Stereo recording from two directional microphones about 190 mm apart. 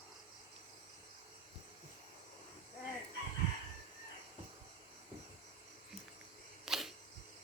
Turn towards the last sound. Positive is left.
turn(degrees=0)  # may be behind; listen again after turning